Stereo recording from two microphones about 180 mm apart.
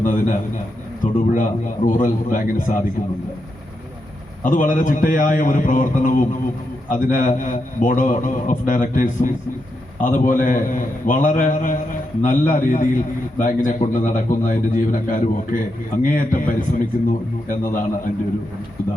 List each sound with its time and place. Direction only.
0.0 s a man's voice: 45° left (ahead or behind)
4.4 s a man's voice: 45° left (ahead or behind)